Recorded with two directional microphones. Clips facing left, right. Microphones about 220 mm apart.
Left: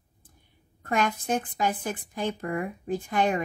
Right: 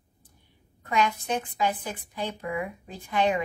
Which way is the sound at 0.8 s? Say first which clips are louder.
Even; 50° left (ahead or behind).